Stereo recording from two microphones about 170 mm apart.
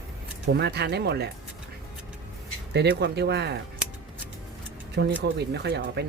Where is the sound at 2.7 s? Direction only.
80° right.